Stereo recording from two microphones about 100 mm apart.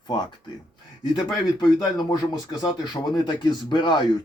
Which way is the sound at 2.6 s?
50° left (ahead or behind).